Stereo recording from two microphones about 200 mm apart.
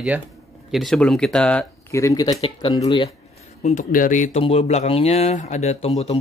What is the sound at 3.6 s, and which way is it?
Speech, 35° left (ahead or behind).